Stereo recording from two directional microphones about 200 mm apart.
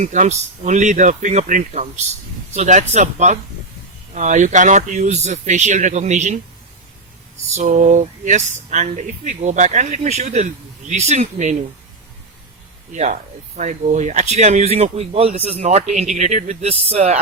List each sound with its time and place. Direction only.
0.0 s speech: 35° right (ahead or behind)
7.5 s speech: 40° right (ahead or behind)
12.9 s speech: 35° right (ahead or behind)